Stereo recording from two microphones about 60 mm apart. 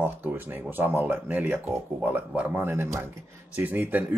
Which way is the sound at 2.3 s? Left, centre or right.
Right.